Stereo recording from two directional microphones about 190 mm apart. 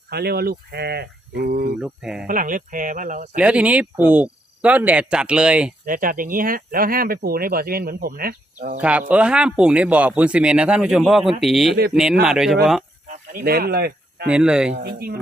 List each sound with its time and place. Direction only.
0.1 s speech: 55° right (ahead or behind)
1.8 s speech: 5° right (ahead or behind)
2.2 s speech: 45° right (ahead or behind)
3.3 s speech: 5° right (ahead or behind)
5.8 s speech: 45° right (ahead or behind)
8.8 s speech: 5° right (ahead or behind)
13.3 s speech: 50° right (ahead or behind)
14.3 s speech: 5° right (ahead or behind)
14.7 s speech: 55° right (ahead or behind)